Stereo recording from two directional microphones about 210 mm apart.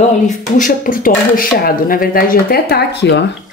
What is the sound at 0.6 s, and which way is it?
Speech, 40° left (ahead or behind).